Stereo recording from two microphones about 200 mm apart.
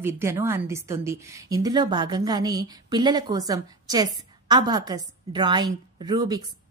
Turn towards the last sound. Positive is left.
turn(degrees=-20)  # may be behind; listen again after turning